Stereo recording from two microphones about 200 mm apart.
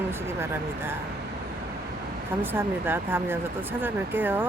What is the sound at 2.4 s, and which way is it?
Speech, 10° right (ahead or behind).